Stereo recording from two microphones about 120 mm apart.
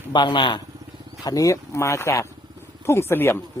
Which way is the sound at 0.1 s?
40° left (ahead or behind).